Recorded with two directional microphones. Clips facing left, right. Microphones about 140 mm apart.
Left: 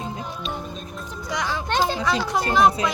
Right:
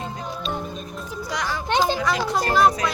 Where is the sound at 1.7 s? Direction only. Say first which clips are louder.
Right 2 dB; 15° right (ahead or behind).